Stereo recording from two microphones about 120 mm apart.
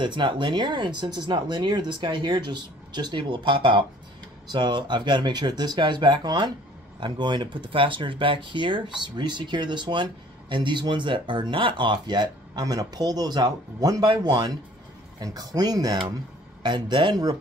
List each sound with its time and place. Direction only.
0.0 s speech: 40° right (ahead or behind)